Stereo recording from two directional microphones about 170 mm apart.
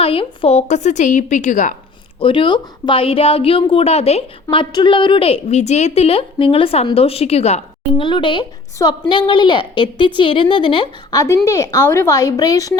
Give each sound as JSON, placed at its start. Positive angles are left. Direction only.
{"t": 0.0, "sound": "a woman's voice", "side_deg": 35}
{"t": 2.1, "sound": "a woman's voice", "side_deg": 30}